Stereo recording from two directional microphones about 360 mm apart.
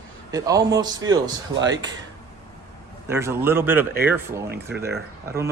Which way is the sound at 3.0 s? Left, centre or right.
Centre.